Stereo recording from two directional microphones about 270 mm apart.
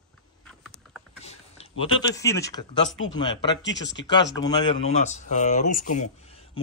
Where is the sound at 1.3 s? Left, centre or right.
Left.